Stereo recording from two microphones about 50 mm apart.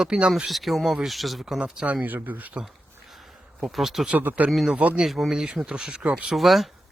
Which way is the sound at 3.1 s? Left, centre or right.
Centre.